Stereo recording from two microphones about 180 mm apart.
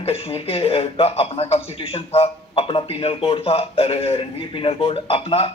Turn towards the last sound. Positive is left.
turn(degrees=30)  # may be behind; listen again after turning